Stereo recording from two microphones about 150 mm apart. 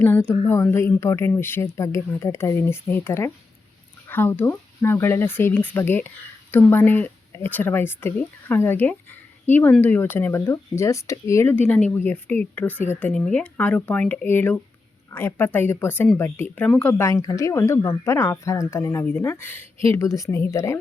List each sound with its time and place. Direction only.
0.3 s speech: 15° left (ahead or behind)